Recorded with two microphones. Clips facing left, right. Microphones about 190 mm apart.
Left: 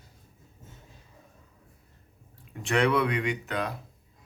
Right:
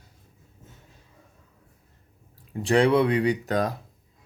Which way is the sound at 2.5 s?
35° right (ahead or behind).